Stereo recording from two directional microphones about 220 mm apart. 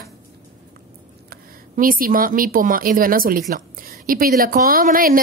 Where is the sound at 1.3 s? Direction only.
40° right (ahead or behind).